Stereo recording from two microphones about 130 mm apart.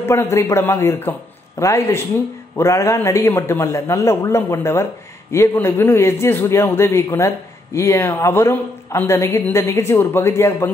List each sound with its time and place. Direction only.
0.0 s speech: 20° left (ahead or behind)